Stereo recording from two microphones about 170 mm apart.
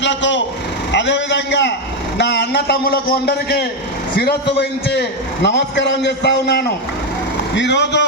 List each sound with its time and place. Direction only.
0.0 s a man's voice: 90° left; by 4.4 s 65° left (ahead or behind)
4.9 s a man's voice: 85° left